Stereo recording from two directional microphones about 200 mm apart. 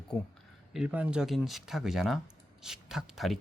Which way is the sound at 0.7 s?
5° right (ahead or behind).